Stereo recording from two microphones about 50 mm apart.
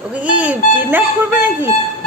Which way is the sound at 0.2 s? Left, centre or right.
Right.